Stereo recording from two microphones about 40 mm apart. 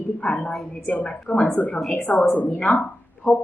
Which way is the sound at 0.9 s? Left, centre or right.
Left.